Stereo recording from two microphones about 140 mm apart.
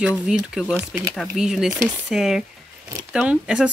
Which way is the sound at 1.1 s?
5° right (ahead or behind).